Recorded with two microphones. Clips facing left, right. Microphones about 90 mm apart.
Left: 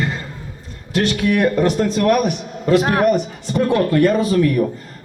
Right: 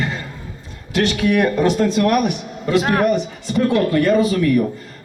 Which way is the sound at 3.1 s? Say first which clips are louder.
Left 2 dB; 45° left (ahead or behind).